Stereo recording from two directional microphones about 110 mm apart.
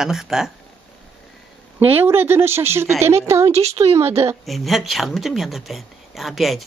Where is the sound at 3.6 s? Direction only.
70° right (ahead or behind).